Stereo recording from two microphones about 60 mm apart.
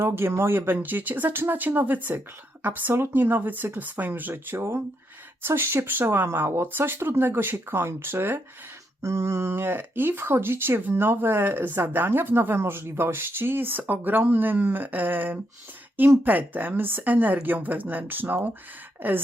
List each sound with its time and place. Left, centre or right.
0.0 s speech: right
4.5 s speech: right
9.0 s speech: right